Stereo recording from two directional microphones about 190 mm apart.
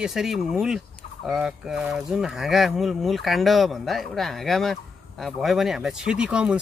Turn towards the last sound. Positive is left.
turn(degrees=-5)  # may be behind; listen again after turning